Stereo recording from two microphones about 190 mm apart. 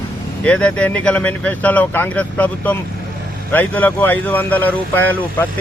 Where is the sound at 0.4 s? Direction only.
5° left (ahead or behind).